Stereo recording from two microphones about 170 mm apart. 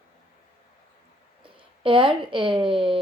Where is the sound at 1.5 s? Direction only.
30° right (ahead or behind).